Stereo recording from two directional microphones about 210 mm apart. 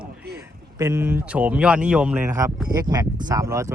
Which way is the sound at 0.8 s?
15° right (ahead or behind).